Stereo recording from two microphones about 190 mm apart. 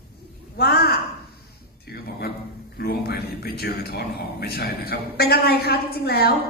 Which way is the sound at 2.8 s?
55° left (ahead or behind).